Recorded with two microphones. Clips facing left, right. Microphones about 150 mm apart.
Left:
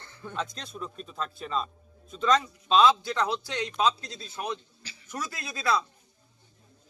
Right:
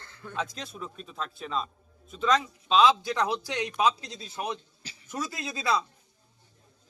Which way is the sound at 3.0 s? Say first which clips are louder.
Right 1 dB; 15° right (ahead or behind).